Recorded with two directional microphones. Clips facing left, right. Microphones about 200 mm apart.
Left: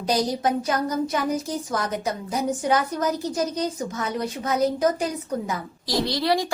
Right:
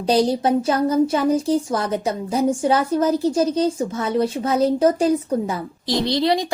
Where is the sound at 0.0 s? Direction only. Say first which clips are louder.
Right 5 dB; 30° right (ahead or behind).